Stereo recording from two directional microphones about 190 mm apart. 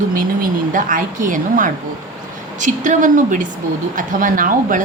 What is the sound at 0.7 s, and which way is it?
A woman's voice, 45° right (ahead or behind).